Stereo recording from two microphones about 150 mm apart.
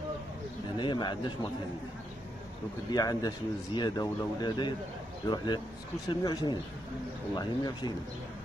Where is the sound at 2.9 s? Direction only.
25° left (ahead or behind).